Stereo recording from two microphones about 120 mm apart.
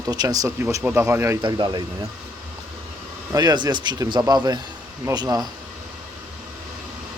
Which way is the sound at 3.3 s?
35° right (ahead or behind).